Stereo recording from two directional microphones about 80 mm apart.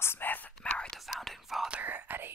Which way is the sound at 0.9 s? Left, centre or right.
Centre.